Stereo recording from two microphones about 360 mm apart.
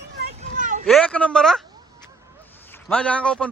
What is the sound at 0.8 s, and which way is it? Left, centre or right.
Speech, centre.